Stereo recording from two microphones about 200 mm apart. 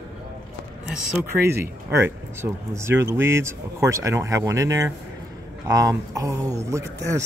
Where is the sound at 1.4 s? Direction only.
10° right (ahead or behind).